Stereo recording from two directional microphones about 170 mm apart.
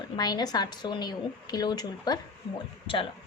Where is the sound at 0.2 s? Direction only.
25° left (ahead or behind).